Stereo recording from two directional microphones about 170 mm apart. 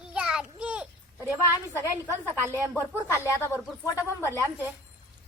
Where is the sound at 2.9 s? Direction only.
15° left (ahead or behind).